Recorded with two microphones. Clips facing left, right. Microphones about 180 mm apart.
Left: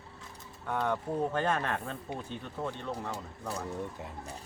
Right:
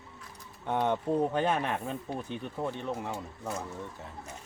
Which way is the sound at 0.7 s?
20° right (ahead or behind).